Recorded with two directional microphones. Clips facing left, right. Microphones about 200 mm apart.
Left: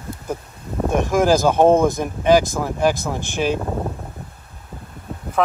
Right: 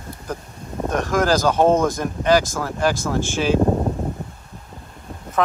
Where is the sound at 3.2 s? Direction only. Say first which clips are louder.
Left 1 dB; 60° left (ahead or behind).